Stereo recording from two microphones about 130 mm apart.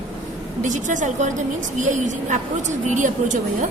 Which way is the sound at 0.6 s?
75° right (ahead or behind).